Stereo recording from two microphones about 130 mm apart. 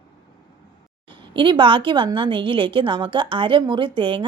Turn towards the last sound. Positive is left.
turn(degrees=-40)  # may be behind; listen again after turning